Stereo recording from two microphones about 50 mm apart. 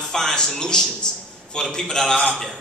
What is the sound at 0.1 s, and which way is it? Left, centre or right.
A man's voice, centre.